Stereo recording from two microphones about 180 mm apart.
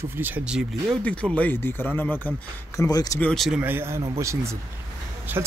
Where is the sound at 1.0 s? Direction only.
5° left (ahead or behind).